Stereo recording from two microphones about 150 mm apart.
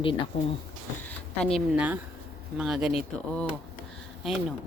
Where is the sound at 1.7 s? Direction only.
10° right (ahead or behind).